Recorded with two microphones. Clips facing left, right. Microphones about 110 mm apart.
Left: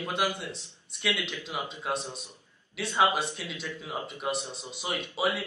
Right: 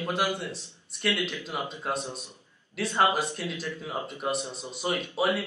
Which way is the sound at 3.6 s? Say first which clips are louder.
Right 2 dB; centre (ahead or behind).